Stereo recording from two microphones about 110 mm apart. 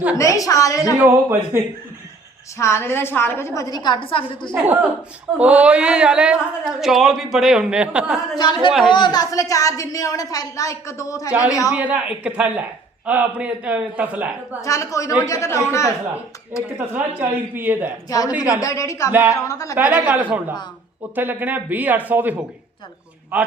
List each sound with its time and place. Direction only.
0.2 s a woman's voice: 30° left (ahead or behind)
0.9 s a man's voice: 20° right (ahead or behind)
2.6 s a woman's voice: 25° left (ahead or behind); by 4.0 s 40° left (ahead or behind)
4.0 s a woman's voice: 50° left (ahead or behind)
5.4 s a woman's voice: 10° right (ahead or behind)
8.4 s a woman's voice: 45° left (ahead or behind); by 11.3 s 30° left (ahead or behind)
11.3 s a woman's voice: 10° right (ahead or behind)
14.6 s a woman's voice: 30° left (ahead or behind)
16.7 s a woman's voice: 20° right (ahead or behind)
18.6 s a woman's voice: 30° left (ahead or behind)
19.1 s a woman's voice: 15° right (ahead or behind)
19.4 s a woman's voice: 30° left (ahead or behind)
19.7 s a woman's voice: 15° right (ahead or behind)
21.2 s a woman's voice: 15° right (ahead or behind)